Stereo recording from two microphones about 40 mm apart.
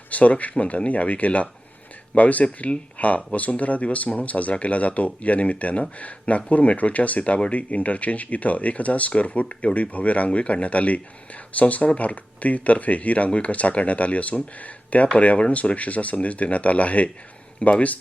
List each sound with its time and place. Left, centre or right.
0.1 s speech: left